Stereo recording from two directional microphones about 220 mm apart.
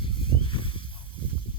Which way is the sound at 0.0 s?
20° left (ahead or behind).